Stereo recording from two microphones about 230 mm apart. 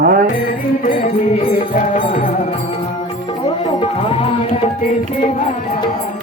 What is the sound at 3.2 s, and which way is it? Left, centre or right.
Speech, left.